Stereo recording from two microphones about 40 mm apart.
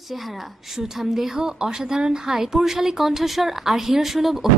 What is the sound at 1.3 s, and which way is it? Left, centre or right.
Speech, centre.